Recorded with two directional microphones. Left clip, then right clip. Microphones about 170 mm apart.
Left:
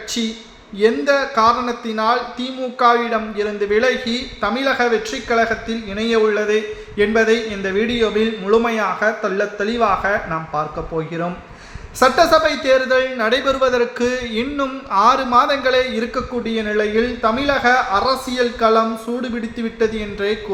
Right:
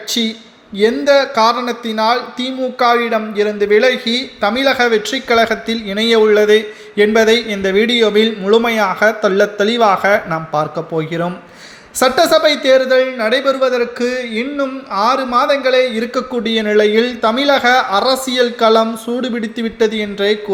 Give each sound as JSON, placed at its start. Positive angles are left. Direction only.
{"t": 0.1, "sound": "a man's voice", "side_deg": -20}
{"t": 16.4, "sound": "a man's voice", "side_deg": -30}